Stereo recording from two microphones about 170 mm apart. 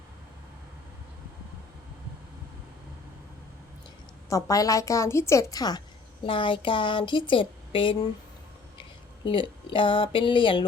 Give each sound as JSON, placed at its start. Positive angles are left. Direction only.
{"t": 4.3, "sound": "speech", "side_deg": 20}